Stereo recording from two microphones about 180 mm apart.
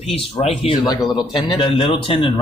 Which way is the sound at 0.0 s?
35° left (ahead or behind).